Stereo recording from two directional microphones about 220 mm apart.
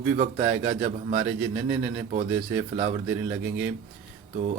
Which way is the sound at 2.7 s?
30° right (ahead or behind).